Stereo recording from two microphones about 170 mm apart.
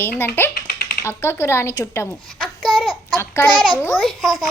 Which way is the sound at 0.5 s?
65° left (ahead or behind).